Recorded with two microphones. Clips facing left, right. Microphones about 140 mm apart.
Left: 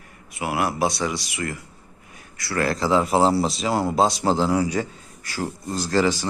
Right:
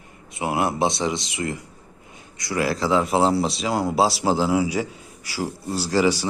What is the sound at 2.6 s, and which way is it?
Speech, centre (ahead or behind).